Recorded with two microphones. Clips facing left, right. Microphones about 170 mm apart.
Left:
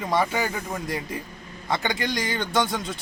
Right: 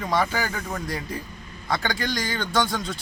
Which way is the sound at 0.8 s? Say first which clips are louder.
Left 1 dB; 20° left (ahead or behind).